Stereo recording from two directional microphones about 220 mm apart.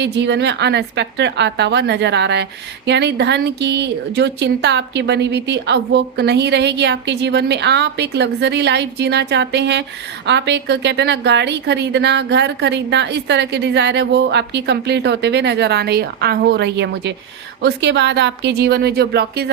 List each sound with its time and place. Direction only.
0.0 s a woman's voice: 50° right (ahead or behind)